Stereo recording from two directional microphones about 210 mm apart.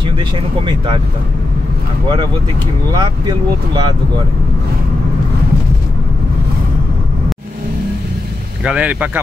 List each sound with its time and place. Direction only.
0.7 s speech: 25° right (ahead or behind)
2.9 s speech: 20° right (ahead or behind)
8.6 s speech: 5° right (ahead or behind)